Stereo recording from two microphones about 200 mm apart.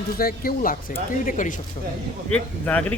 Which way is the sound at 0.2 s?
45° left (ahead or behind).